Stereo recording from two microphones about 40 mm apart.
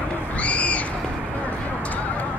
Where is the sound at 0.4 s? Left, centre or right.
Left.